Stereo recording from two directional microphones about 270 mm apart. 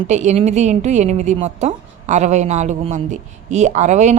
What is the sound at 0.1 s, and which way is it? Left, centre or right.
A woman's voice, right.